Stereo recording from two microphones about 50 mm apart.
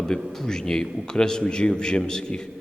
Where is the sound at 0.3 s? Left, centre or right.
Centre.